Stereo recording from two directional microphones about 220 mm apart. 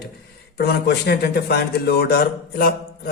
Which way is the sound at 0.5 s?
50° left (ahead or behind).